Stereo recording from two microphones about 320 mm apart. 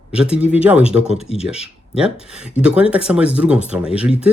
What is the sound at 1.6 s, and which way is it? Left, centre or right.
Speech, centre.